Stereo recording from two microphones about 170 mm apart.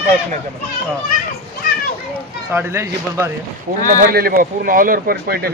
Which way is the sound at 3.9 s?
55° right (ahead or behind).